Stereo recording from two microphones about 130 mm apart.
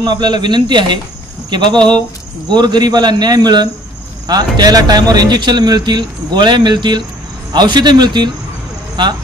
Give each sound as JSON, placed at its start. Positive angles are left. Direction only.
{"t": 0.0, "sound": "speech", "side_deg": -35}